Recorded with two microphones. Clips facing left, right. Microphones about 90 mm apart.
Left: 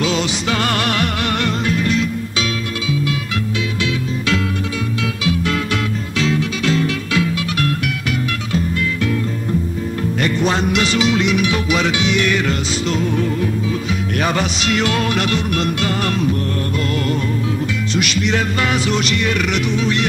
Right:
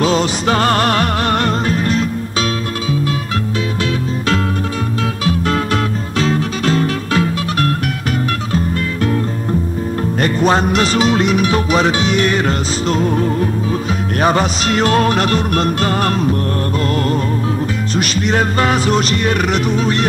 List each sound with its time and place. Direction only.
0.0 s music: 40° right (ahead or behind)
5.2 s music: 40° right (ahead or behind)
10.2 s music: 40° right (ahead or behind)
17.9 s music: 40° right (ahead or behind)